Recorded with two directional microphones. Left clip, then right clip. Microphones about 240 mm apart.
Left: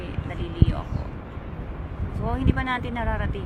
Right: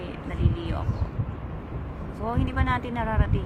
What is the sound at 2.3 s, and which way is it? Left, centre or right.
A woman's voice, centre.